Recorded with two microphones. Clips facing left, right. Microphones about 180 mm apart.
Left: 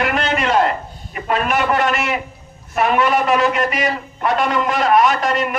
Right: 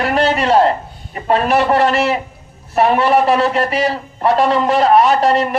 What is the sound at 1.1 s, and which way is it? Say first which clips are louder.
A man's voice: right 5 dB; 35° right (ahead or behind).